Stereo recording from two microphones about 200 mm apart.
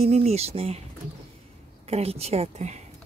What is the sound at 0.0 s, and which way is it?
Speech, 30° right (ahead or behind).